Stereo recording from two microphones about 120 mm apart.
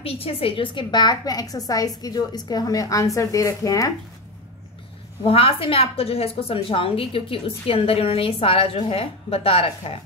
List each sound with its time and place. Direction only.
0.0 s a woman's voice: 50° left (ahead or behind); by 3.9 s 30° left (ahead or behind)
5.2 s a woman's voice: 50° left (ahead or behind)